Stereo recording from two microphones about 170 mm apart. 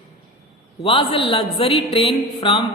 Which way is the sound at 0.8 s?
35° left (ahead or behind).